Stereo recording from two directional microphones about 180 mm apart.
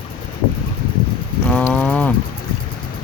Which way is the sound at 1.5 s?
5° left (ahead or behind).